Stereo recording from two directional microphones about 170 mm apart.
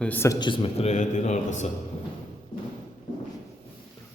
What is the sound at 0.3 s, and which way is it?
A man's voice, 30° left (ahead or behind).